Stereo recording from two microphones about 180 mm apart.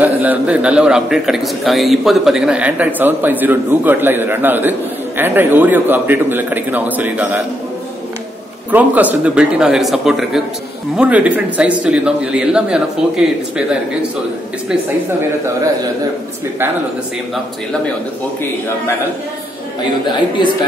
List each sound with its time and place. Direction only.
0.0 s a man's voice: 10° right (ahead or behind)
8.7 s a man's voice: 10° right (ahead or behind)
15.4 s a man's voice: 20° right (ahead or behind)
20.1 s speech: 25° left (ahead or behind)